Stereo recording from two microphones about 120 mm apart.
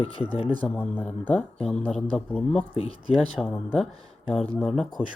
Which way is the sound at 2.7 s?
50° left (ahead or behind).